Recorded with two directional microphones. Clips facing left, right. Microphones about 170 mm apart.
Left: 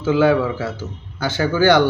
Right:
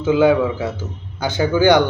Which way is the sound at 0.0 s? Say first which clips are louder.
Right 1 dB; 15° right (ahead or behind).